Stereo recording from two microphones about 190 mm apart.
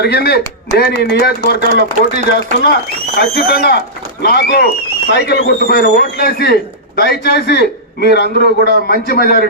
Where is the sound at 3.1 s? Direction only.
55° left (ahead or behind).